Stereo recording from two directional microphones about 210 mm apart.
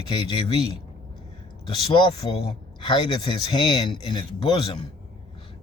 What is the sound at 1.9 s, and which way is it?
Speech, 20° left (ahead or behind).